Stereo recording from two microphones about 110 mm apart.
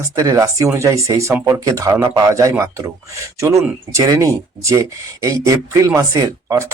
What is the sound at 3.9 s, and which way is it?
Speech, 30° right (ahead or behind).